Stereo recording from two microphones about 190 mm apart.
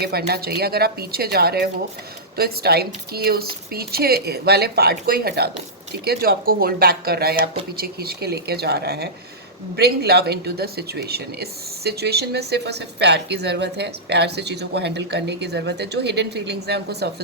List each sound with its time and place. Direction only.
0.0 s speech: 55° right (ahead or behind)